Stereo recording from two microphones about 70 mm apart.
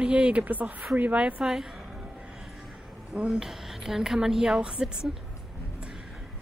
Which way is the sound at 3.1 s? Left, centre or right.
Centre.